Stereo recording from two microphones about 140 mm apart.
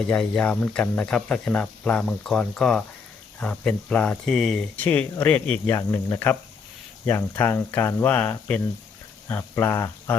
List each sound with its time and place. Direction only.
0.1 s speech: 10° left (ahead or behind)